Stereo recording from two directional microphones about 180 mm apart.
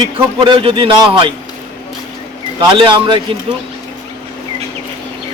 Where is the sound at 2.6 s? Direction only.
25° right (ahead or behind).